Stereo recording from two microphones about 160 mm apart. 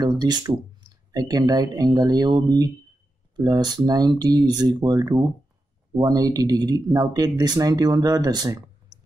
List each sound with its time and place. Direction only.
0.0 s speech: 25° right (ahead or behind)